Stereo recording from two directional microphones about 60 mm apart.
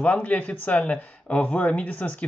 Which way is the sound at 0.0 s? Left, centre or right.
Left.